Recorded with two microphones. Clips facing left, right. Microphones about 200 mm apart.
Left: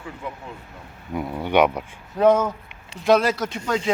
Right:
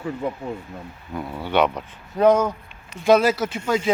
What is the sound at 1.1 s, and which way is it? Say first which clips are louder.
Speech: left 2 dB; 15° left (ahead or behind).